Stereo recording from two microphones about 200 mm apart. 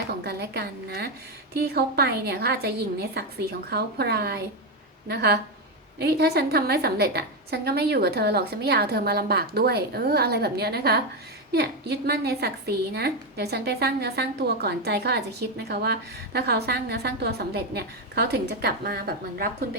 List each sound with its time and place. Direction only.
0.1 s a woman's voice: 55° right (ahead or behind)